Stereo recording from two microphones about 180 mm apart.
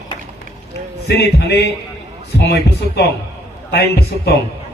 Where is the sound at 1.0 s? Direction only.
65° left (ahead or behind).